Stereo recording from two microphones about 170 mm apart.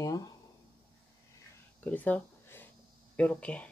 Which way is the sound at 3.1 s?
10° left (ahead or behind).